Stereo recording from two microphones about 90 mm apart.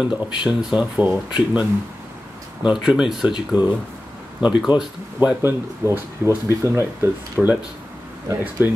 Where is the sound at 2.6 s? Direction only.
10° right (ahead or behind).